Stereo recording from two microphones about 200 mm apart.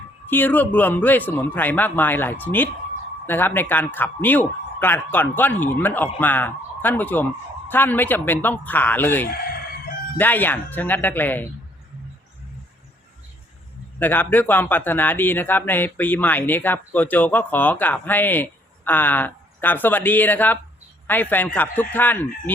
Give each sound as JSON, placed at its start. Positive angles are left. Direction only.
{"t": 0.3, "sound": "a man's voice", "side_deg": 10}
{"t": 9.3, "sound": "crowing", "side_deg": 50}
{"t": 10.2, "sound": "a man's voice", "side_deg": 10}
{"t": 14.0, "sound": "a man's voice", "side_deg": 10}